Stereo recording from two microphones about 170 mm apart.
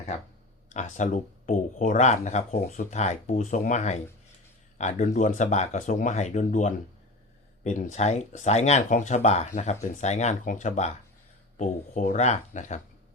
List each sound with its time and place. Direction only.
0.7 s speech: 45° left (ahead or behind)